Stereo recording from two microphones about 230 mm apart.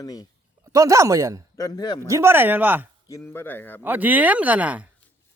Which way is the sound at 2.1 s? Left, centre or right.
Centre.